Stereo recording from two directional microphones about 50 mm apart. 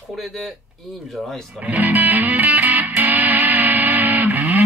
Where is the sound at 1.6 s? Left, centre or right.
Right.